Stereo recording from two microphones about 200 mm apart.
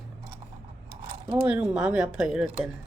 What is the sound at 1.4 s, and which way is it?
Speech, 5° right (ahead or behind).